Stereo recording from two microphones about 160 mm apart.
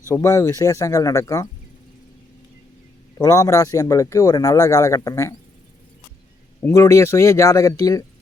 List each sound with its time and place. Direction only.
0.1 s speech: 15° left (ahead or behind)
3.2 s speech: 20° left (ahead or behind)
6.6 s speech: 15° left (ahead or behind)